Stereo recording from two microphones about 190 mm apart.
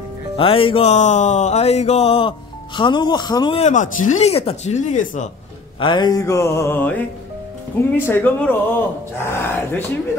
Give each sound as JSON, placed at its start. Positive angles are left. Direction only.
{"t": 0.4, "sound": "music", "side_deg": 30}
{"t": 3.6, "sound": "speech", "side_deg": 40}
{"t": 5.8, "sound": "speech", "side_deg": 25}